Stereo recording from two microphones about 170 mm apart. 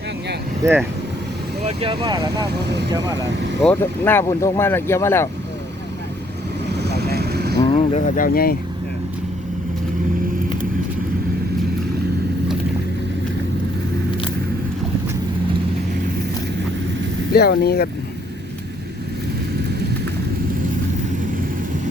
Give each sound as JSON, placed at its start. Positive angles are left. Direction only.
{"t": 0.6, "sound": "speech", "side_deg": -15}
{"t": 1.6, "sound": "speech", "side_deg": -30}
{"t": 2.6, "sound": "speech", "side_deg": -85}
{"t": 3.6, "sound": "speech", "side_deg": 10}
{"t": 6.7, "sound": "vehicle", "side_deg": -75}
{"t": 7.6, "sound": "speech", "side_deg": 35}
{"t": 8.2, "sound": "speech", "side_deg": 60}
{"t": 17.3, "sound": "speech", "side_deg": 70}